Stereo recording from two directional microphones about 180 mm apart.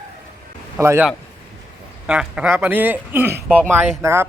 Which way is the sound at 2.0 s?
5° right (ahead or behind).